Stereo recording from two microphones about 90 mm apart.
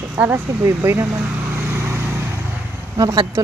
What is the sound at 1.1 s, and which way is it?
Speech, 15° right (ahead or behind).